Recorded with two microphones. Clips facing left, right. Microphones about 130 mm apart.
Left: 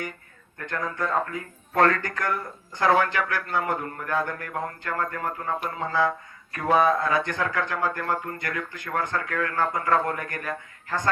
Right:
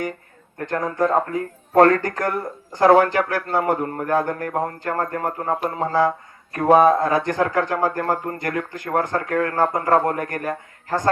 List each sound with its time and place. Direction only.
0.6 s speech: 40° right (ahead or behind)